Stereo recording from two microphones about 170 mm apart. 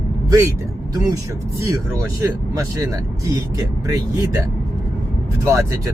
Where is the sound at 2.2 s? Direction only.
20° right (ahead or behind).